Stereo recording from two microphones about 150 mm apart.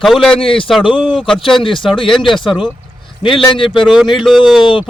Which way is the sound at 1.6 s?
35° left (ahead or behind).